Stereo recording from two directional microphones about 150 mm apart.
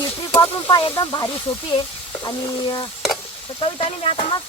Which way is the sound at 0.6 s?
25° left (ahead or behind).